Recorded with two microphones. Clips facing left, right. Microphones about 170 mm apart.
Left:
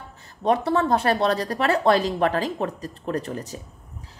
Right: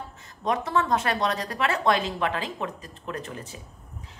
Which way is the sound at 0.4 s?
35° left (ahead or behind).